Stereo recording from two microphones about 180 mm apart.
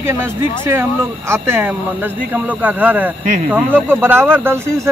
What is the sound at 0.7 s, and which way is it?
Speech, 15° right (ahead or behind).